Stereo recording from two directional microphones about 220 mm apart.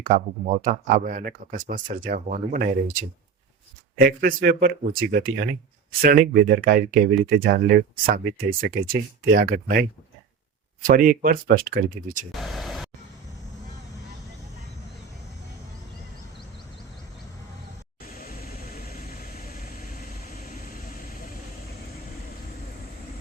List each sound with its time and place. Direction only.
0.0 s speech: 35° right (ahead or behind)
4.0 s speech: 40° right (ahead or behind)
10.8 s speech: 40° right (ahead or behind)
12.3 s vehicle: centre (ahead or behind)
18.2 s vehicle: 40° left (ahead or behind)